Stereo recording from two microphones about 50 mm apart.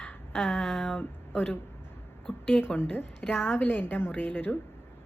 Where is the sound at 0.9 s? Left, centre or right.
Left.